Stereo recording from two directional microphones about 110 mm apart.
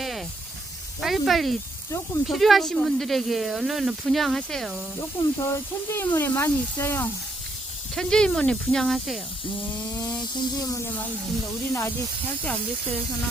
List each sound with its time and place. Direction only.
1.0 s speech: centre (ahead or behind)
4.9 s speech: 25° left (ahead or behind)
7.9 s speech: 5° left (ahead or behind)
9.7 s speech: 40° left (ahead or behind)